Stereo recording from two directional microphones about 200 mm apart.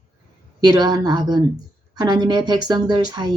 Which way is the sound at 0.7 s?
20° right (ahead or behind).